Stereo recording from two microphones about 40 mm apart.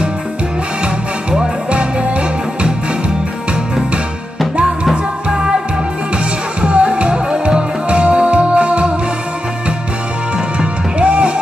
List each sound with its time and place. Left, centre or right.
1.3 s music: right
5.3 s music: right
10.6 s music: right